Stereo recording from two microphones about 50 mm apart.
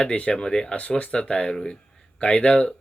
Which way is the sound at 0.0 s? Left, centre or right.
Left.